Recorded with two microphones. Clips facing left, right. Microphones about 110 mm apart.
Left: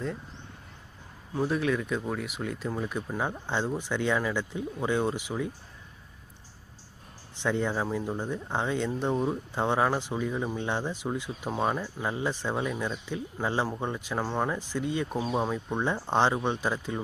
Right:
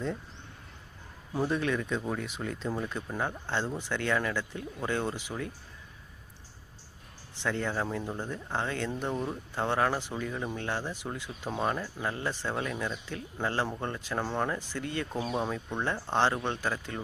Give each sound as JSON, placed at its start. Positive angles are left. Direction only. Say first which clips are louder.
{"t": 1.3, "sound": "speech", "louder": "left 2 dB", "side_deg": 0}
{"t": 7.4, "sound": "speech", "louder": "left 3 dB", "side_deg": 15}
{"t": 15.4, "sound": "speech", "louder": "left 4 dB", "side_deg": 10}